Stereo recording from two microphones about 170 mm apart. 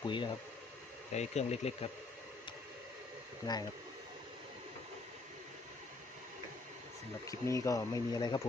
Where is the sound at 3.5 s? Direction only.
25° left (ahead or behind).